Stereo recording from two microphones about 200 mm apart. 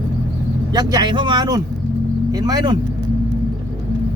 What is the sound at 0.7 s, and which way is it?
Speech, 20° right (ahead or behind).